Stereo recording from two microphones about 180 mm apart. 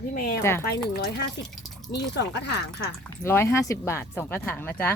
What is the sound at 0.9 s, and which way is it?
Speech, 65° left (ahead or behind).